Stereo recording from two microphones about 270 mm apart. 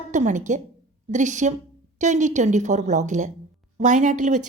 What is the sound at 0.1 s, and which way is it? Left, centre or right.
A woman's voice, right.